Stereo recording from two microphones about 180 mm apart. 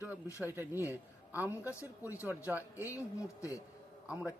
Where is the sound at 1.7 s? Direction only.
15° left (ahead or behind).